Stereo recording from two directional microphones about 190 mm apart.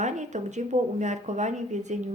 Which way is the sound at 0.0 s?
40° right (ahead or behind).